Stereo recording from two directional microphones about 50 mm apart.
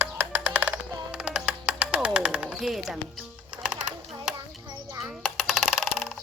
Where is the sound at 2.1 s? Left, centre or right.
Centre.